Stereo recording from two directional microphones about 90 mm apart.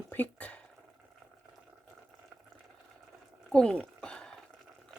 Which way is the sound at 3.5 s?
10° left (ahead or behind).